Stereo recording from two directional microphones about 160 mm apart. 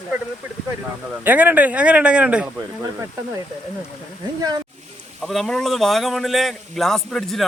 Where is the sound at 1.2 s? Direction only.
10° right (ahead or behind).